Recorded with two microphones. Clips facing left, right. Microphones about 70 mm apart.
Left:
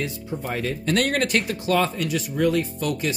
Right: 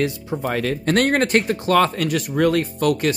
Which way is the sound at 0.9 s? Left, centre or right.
Right.